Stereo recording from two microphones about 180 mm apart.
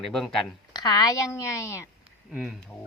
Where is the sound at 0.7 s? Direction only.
20° left (ahead or behind).